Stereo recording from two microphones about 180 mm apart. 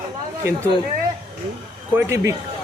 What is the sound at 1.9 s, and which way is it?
Speech, 15° right (ahead or behind).